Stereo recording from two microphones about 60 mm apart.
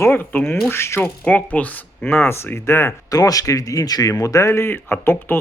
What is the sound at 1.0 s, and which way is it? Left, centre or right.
Speech, left.